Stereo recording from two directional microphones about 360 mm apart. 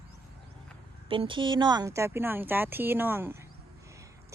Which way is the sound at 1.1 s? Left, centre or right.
Centre.